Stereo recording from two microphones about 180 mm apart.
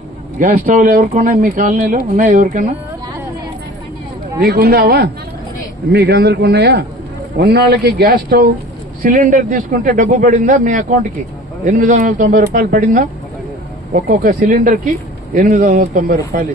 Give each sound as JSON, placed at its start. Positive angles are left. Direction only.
{"t": 0.4, "sound": "speech", "side_deg": -50}
{"t": 4.4, "sound": "speech", "side_deg": -60}